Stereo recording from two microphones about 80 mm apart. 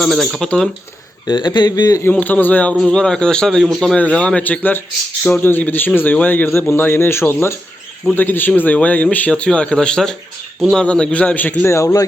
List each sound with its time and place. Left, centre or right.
0.0 s a man's voice: centre
1.3 s speech: left
2.2 s a man's voice: left
2.8 s a man's voice: centre
3.9 s a man's voice: centre
11.7 s speech: left